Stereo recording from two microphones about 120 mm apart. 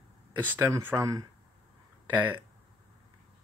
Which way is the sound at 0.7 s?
20° right (ahead or behind).